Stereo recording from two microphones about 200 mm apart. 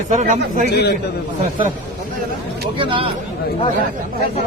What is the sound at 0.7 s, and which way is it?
Speech, 55° left (ahead or behind).